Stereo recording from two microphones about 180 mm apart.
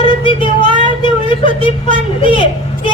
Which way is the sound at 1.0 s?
30° left (ahead or behind).